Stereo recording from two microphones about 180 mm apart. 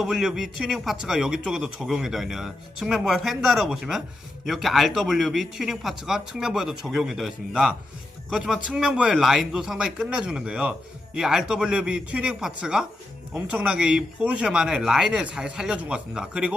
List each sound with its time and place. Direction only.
0.0 s a man's voice: centre (ahead or behind)